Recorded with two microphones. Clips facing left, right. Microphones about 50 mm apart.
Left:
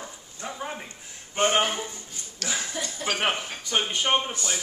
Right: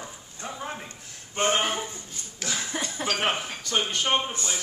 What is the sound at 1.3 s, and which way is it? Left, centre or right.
Speech, left.